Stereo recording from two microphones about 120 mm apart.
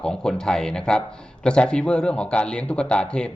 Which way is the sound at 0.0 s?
5° left (ahead or behind).